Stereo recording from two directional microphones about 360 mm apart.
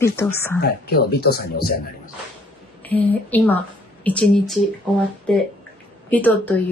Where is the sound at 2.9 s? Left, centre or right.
Centre.